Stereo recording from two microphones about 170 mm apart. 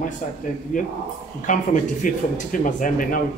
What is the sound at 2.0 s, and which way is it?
Speech, 50° left (ahead or behind).